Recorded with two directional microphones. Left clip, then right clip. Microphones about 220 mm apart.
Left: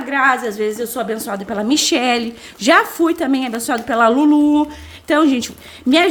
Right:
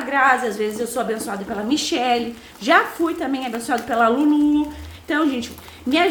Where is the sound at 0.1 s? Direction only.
40° left (ahead or behind).